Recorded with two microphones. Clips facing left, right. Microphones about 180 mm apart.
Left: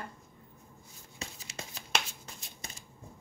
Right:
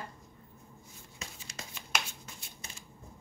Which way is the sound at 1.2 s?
35° left (ahead or behind).